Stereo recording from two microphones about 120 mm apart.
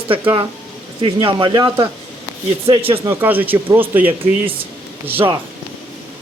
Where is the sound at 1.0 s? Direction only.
45° right (ahead or behind).